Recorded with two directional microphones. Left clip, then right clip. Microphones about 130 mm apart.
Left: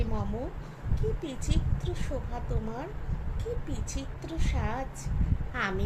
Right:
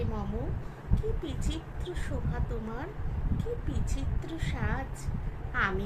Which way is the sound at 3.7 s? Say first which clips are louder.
Left 1 dB; 25° left (ahead or behind).